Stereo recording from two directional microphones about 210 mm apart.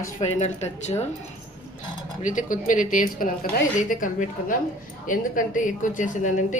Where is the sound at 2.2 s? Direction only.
40° left (ahead or behind).